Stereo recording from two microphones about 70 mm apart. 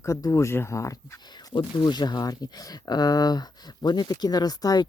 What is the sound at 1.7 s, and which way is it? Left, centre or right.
Speech, left.